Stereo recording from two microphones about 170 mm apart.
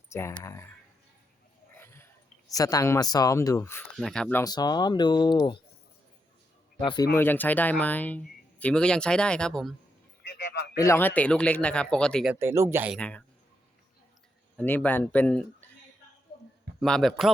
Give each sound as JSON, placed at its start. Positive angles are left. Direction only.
{"t": 0.1, "sound": "speech", "side_deg": 15}
{"t": 1.7, "sound": "a sound", "side_deg": 15}
{"t": 2.5, "sound": "speech", "side_deg": 20}
{"t": 3.9, "sound": "a man's voice", "side_deg": 0}
{"t": 4.4, "sound": "speech", "side_deg": 25}
{"t": 6.7, "sound": "speech", "side_deg": 25}
{"t": 7.2, "sound": "speech", "side_deg": 10}
{"t": 10.2, "sound": "a sound", "side_deg": 75}
{"t": 10.8, "sound": "speech", "side_deg": 15}
{"t": 12.3, "sound": "speech", "side_deg": -15}
{"t": 12.9, "sound": "speech", "side_deg": 5}
{"t": 14.5, "sound": "speech", "side_deg": 10}
{"t": 16.8, "sound": "a man's voice", "side_deg": 0}